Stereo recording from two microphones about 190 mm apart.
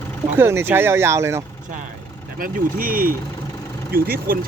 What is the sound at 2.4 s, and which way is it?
Speech, 45° right (ahead or behind).